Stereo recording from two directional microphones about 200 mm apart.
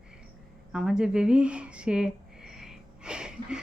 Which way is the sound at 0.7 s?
5° right (ahead or behind).